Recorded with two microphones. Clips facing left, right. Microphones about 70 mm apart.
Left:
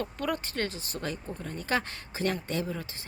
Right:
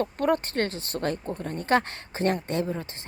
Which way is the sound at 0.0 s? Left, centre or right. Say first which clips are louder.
Right 7 dB; right.